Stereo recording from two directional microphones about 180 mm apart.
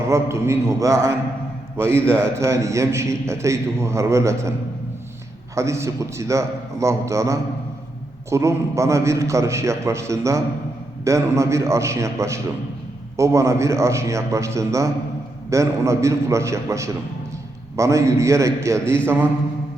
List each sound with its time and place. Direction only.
0.1 s a man's voice: 15° right (ahead or behind)
5.5 s a man's voice: 15° right (ahead or behind)